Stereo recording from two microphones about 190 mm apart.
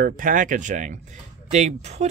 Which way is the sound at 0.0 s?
45° right (ahead or behind).